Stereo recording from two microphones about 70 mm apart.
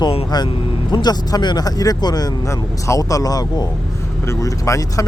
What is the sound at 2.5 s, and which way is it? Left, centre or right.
Speech, left.